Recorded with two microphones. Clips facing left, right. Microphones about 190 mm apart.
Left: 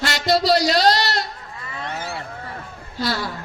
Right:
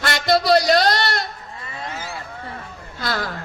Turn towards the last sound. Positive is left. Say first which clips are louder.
# left 1 dB
turn(degrees=-50)  # may be behind; listen again after turning